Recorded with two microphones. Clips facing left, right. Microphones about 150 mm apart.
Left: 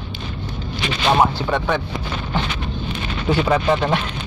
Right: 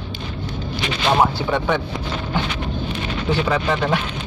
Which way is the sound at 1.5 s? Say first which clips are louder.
Even; 15° right (ahead or behind).